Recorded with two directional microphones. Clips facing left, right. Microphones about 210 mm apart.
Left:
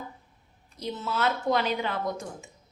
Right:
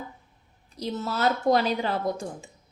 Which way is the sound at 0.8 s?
40° right (ahead or behind).